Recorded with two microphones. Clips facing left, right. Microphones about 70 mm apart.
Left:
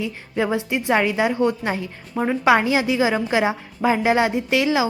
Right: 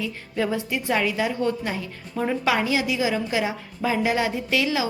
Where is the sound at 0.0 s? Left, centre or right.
Left.